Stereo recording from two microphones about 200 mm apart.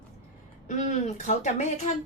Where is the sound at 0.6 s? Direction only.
35° left (ahead or behind).